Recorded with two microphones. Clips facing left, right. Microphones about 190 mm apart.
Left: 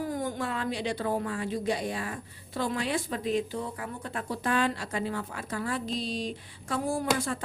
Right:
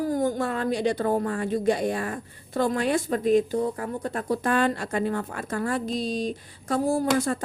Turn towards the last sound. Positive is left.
turn(degrees=-40)  # may be behind; listen again after turning